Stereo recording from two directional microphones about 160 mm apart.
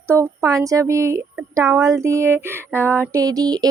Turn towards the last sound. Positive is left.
turn(degrees=-25)  # may be behind; listen again after turning